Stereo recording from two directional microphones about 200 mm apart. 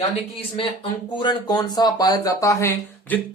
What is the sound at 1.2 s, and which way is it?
Speech, 20° left (ahead or behind).